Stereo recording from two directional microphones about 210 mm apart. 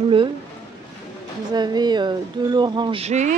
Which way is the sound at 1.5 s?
20° right (ahead or behind).